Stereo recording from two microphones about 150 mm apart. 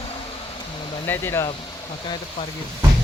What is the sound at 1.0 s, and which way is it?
Speech, 15° left (ahead or behind).